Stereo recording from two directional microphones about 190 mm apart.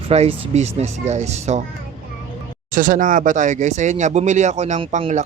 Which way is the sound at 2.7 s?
45° right (ahead or behind).